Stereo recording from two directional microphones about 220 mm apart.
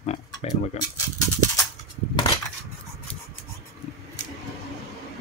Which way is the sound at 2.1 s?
15° left (ahead or behind).